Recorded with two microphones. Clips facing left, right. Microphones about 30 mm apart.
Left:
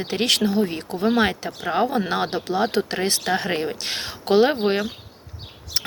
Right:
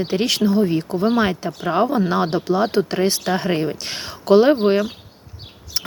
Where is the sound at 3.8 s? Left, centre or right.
Left.